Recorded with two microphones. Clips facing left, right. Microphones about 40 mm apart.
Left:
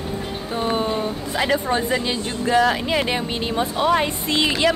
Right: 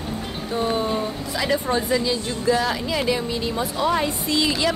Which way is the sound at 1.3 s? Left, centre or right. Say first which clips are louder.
Left 2 dB; left.